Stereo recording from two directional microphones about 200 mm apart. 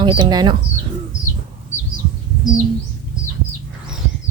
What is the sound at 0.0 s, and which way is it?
Speech, 20° right (ahead or behind).